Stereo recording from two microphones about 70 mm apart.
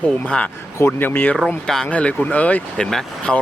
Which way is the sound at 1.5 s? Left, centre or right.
Centre.